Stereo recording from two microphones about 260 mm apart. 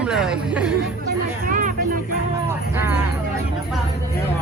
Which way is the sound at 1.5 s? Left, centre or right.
Right.